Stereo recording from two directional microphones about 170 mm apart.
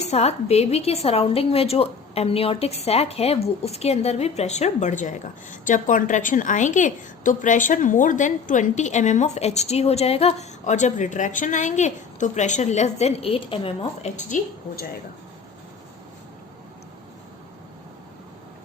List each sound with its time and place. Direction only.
0.0 s a woman's voice: 40° left (ahead or behind)